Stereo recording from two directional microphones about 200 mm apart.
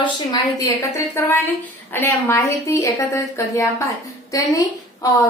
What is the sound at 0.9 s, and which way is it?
A woman's voice, 15° left (ahead or behind).